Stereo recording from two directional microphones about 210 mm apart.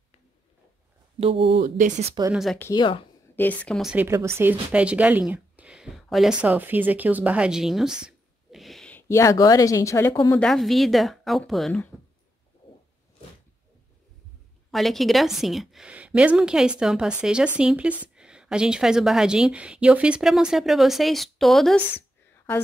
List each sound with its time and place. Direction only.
1.5 s speech: 35° right (ahead or behind)
2.3 s speech: centre (ahead or behind)
2.6 s speech: 20° left (ahead or behind)
3.3 s speech: 5° left (ahead or behind)
10.4 s speech: centre (ahead or behind)
14.7 s speech: centre (ahead or behind)